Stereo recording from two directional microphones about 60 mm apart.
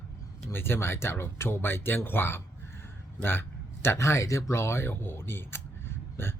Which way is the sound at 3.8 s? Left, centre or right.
Left.